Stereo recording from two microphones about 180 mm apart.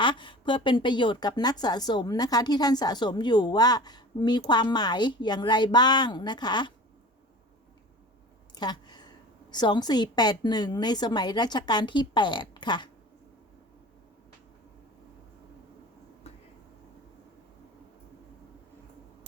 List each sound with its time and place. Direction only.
0.0 s a woman's voice: 25° left (ahead or behind)
8.5 s a sound: 25° left (ahead or behind)
9.5 s a woman's voice: 25° left (ahead or behind)